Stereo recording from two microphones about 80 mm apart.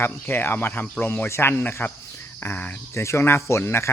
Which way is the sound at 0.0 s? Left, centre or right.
Left.